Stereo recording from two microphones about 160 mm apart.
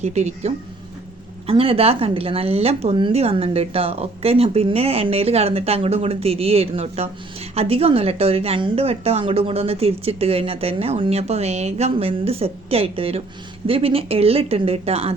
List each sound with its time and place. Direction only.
0.0 s a woman's voice: 45° right (ahead or behind)